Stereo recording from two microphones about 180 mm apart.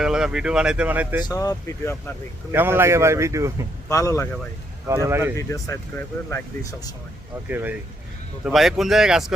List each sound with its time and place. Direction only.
0.0 s speech: 5° right (ahead or behind)
1.2 s speech: 20° left (ahead or behind)
2.5 s speech: 15° right (ahead or behind)
3.8 s speech: 15° left (ahead or behind)
4.9 s speech: 15° right (ahead or behind)
5.4 s speech: 15° left (ahead or behind)
7.4 s speech: 10° right (ahead or behind)